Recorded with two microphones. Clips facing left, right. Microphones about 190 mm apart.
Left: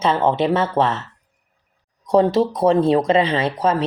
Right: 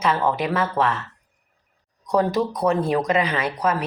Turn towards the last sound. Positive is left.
turn(degrees=25)  # may be behind; listen again after turning